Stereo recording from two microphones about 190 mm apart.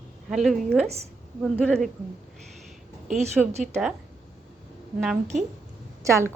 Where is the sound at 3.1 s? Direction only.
35° right (ahead or behind).